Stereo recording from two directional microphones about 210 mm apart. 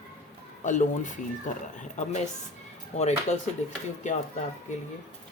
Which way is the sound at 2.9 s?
35° left (ahead or behind).